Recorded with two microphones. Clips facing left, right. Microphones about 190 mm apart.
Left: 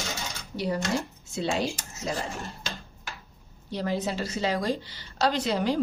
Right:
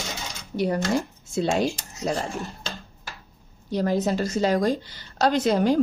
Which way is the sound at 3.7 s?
45° right (ahead or behind).